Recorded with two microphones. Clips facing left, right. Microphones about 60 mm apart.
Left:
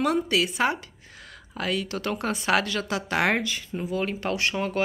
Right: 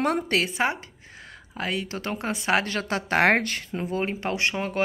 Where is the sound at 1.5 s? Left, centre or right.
Right.